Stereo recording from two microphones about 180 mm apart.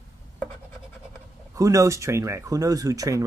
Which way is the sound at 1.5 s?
15° right (ahead or behind).